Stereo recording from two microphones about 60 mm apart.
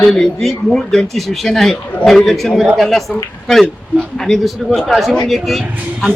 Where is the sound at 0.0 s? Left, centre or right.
Centre.